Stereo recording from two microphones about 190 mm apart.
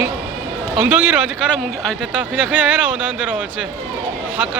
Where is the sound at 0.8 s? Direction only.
10° right (ahead or behind).